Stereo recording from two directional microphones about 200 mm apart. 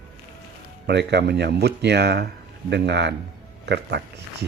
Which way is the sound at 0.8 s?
55° right (ahead or behind).